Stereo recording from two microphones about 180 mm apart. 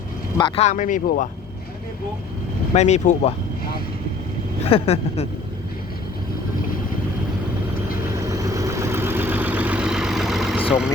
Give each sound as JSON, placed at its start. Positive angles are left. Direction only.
{"t": 0.3, "sound": "speech", "side_deg": 25}
{"t": 0.6, "sound": "speech", "side_deg": 45}
{"t": 2.7, "sound": "speech", "side_deg": 40}
{"t": 4.7, "sound": "speech", "side_deg": 35}
{"t": 8.1, "sound": "vehicle", "side_deg": -20}